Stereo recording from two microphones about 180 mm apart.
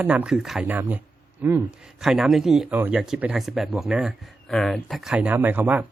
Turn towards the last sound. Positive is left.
turn(degrees=-10)  # may be behind; listen again after turning